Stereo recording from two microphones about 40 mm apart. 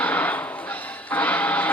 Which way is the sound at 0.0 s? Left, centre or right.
Left.